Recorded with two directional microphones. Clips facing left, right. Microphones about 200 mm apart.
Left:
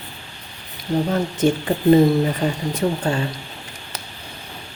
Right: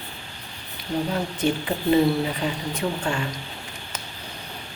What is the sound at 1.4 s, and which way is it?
A woman's voice, 45° left (ahead or behind).